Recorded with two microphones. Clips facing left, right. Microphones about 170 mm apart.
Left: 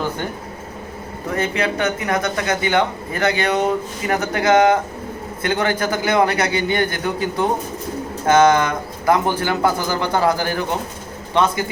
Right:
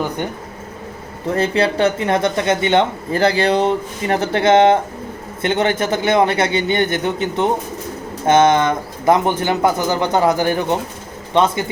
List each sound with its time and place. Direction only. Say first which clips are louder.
1.3 s speech: right 4 dB; 30° right (ahead or behind)